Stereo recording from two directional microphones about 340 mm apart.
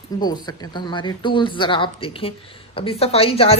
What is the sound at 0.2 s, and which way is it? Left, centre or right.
A woman's voice, centre.